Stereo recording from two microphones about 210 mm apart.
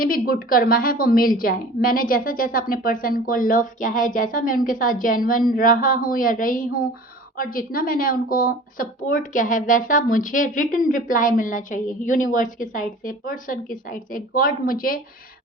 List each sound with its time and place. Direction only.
0.0 s speech: 40° left (ahead or behind)